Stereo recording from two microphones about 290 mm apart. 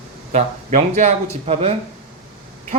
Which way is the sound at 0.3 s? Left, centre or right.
Right.